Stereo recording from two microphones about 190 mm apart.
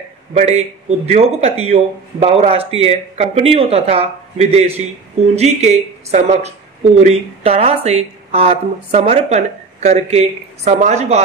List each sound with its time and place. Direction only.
0.3 s speech: 35° right (ahead or behind)